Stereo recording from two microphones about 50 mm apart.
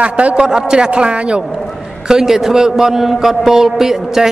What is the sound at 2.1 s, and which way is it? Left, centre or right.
A man's voice, centre.